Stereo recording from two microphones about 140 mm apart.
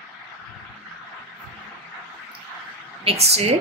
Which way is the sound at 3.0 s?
45° right (ahead or behind).